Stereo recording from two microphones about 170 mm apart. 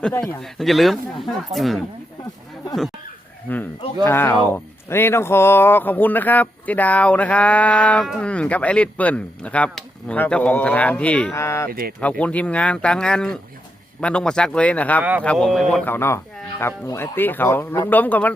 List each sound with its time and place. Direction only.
0.1 s speech: 15° left (ahead or behind)
0.4 s speech: centre (ahead or behind)
3.5 s speech: 10° left (ahead or behind)
11.7 s speech: 60° right (ahead or behind)
11.9 s speech: 5° left (ahead or behind)
15.9 s speech: 15° left (ahead or behind)